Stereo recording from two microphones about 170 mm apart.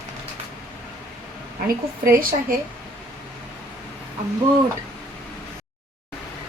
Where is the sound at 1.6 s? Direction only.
60° right (ahead or behind).